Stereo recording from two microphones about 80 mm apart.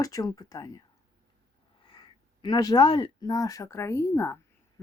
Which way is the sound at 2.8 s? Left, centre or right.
Left.